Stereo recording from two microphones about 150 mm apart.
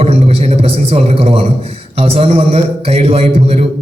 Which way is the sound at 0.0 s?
45° right (ahead or behind).